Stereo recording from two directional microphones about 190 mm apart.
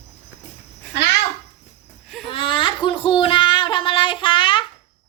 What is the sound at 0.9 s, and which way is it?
Speech, 65° left (ahead or behind).